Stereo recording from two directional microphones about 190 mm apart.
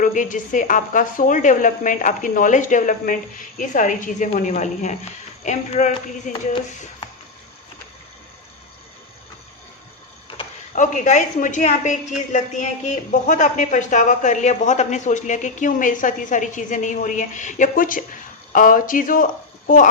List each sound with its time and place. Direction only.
0.0 s a woman's voice: 45° left (ahead or behind)
10.3 s a sound: 25° left (ahead or behind)
10.8 s a woman's voice: 40° left (ahead or behind)